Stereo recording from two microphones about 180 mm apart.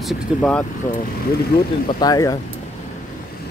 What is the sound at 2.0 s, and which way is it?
Speech, 20° left (ahead or behind).